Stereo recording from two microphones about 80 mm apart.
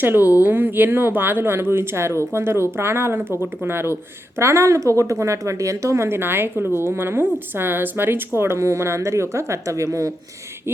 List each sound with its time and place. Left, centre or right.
0.0 s speech: right